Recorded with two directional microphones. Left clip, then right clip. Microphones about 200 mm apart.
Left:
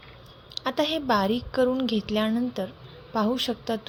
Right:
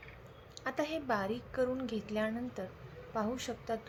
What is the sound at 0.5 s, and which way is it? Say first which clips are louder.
A woman's voice: left 10 dB; 35° left (ahead or behind).